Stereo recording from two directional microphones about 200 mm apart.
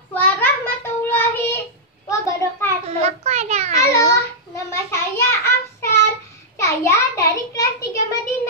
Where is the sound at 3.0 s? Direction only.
35° right (ahead or behind).